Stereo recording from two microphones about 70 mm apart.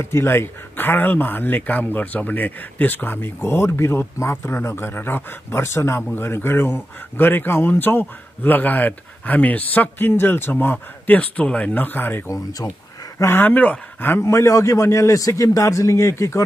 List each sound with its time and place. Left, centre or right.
0.0 s speech: left
12.3 s speech: left
13.2 s speech: left
13.5 s speech: left
14.2 s a man's voice: left